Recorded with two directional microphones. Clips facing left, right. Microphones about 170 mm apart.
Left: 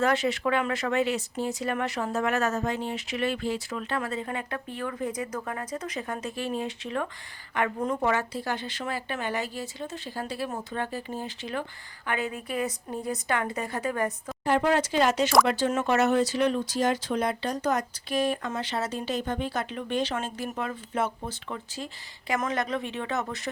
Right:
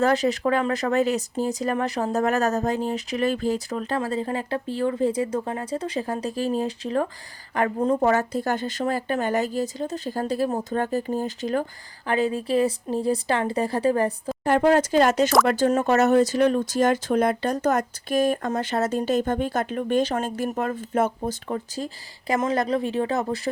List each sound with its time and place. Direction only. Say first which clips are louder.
0.0 s speech: right 4 dB; 35° right (ahead or behind)
14.4 s speech: right 5 dB; 45° right (ahead or behind)